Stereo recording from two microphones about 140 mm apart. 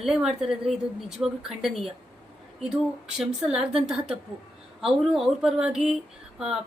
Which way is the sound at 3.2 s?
5° right (ahead or behind).